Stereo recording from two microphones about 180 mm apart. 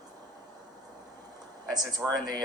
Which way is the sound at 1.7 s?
20° right (ahead or behind).